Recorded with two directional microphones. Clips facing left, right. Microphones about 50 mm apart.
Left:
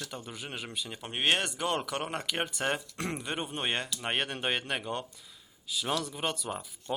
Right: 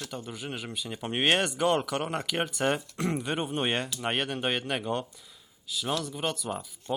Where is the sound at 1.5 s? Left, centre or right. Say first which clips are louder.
Right 5 dB; centre.